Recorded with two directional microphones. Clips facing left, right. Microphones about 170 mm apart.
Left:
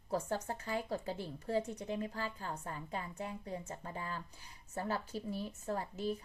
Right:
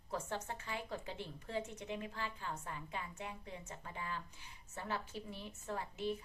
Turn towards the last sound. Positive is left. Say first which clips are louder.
# left 3 dB
turn(degrees=40)  # may be behind; listen again after turning